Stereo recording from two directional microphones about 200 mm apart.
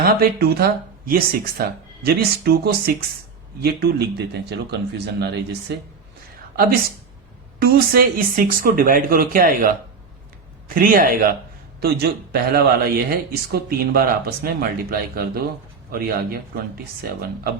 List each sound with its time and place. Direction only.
0.0 s speech: 50° right (ahead or behind)
7.6 s speech: 45° right (ahead or behind)
10.8 s speech: 45° right (ahead or behind)